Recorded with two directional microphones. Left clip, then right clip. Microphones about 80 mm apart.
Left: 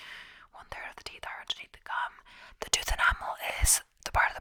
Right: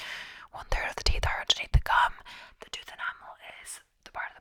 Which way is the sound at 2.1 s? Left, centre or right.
Right.